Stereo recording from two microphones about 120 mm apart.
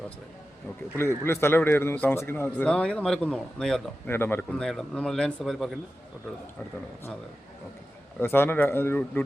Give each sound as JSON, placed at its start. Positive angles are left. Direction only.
{"t": 0.9, "sound": "a man's voice", "side_deg": 20}
{"t": 4.0, "sound": "a man's voice", "side_deg": 20}
{"t": 4.5, "sound": "speech", "side_deg": 5}
{"t": 8.2, "sound": "a man's voice", "side_deg": 15}